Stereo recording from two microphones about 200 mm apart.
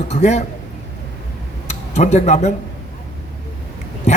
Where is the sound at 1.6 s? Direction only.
35° left (ahead or behind).